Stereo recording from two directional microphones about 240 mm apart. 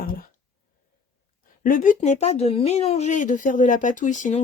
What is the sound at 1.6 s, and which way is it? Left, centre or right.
Speech, left.